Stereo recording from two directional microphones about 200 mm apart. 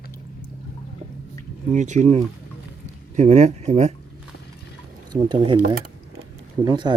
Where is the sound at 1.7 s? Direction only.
35° right (ahead or behind).